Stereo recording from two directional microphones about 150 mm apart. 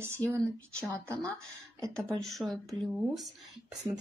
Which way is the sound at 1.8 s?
5° left (ahead or behind).